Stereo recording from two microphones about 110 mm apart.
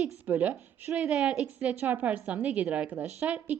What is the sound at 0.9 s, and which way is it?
A woman's voice, 5° right (ahead or behind).